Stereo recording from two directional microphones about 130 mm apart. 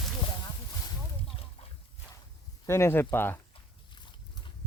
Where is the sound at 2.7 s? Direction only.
20° left (ahead or behind).